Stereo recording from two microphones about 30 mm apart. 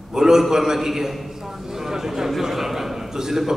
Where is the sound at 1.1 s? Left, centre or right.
Centre.